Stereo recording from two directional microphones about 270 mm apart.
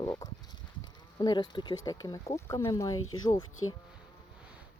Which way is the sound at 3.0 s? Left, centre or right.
Left.